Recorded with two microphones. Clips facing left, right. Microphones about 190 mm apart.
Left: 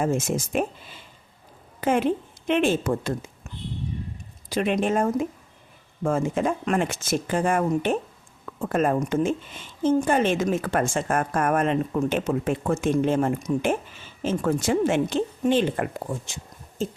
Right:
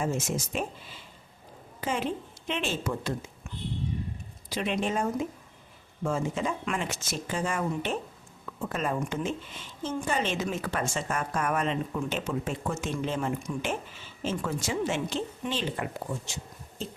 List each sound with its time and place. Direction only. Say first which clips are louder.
0.0 s speech: left 6 dB; 55° left (ahead or behind)
1.8 s speech: left 8 dB; 55° left (ahead or behind)
4.4 s speech: left 6 dB; 50° left (ahead or behind)